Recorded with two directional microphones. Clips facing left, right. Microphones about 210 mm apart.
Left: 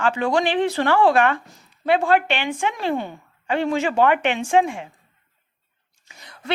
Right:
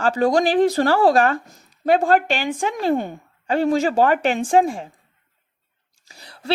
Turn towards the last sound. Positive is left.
turn(degrees=-35)  # may be behind; listen again after turning